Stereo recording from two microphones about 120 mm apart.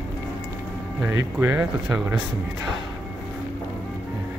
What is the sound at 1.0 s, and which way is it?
Speech, 20° right (ahead or behind).